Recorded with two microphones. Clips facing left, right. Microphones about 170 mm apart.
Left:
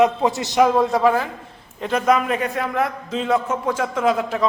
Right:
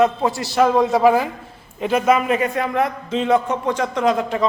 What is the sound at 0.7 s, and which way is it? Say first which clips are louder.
A man's voice: right 2 dB; centre (ahead or behind).